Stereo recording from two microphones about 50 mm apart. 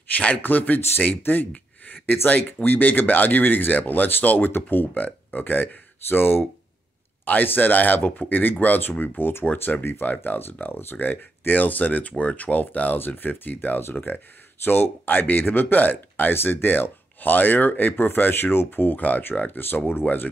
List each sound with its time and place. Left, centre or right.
0.4 s speech: left
7.2 s speech: left